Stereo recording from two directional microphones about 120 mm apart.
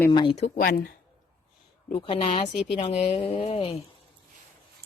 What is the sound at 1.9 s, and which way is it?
A woman's voice, 50° left (ahead or behind).